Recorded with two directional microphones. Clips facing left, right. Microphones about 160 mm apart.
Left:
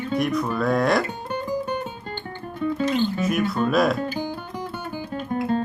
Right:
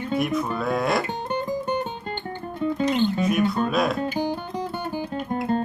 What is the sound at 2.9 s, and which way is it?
Speech, 20° right (ahead or behind).